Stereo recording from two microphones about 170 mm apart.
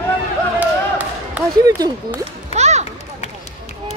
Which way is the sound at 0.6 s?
10° right (ahead or behind).